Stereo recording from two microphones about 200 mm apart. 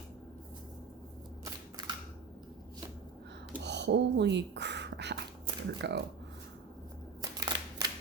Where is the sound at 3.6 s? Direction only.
60° right (ahead or behind).